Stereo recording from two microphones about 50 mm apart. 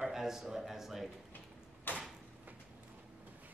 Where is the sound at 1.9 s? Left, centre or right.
Left.